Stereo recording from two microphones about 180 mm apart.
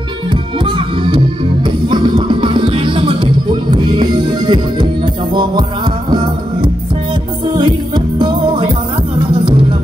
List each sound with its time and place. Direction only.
0.3 s music: 25° right (ahead or behind)
7.5 s music: 25° right (ahead or behind)